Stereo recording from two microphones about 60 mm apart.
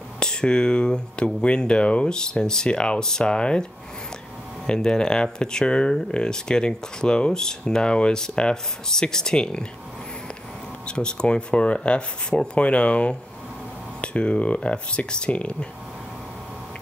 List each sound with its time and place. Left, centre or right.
0.2 s speech: centre
4.6 s speech: centre
10.9 s speech: centre